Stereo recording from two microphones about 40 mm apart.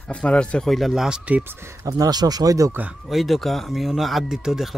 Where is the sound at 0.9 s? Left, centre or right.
Centre.